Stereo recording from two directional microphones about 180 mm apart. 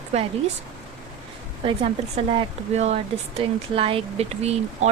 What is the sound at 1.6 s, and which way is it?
Speech, 30° right (ahead or behind).